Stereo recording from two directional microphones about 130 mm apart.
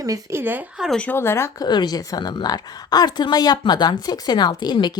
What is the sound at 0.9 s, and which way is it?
Speech, 10° left (ahead or behind).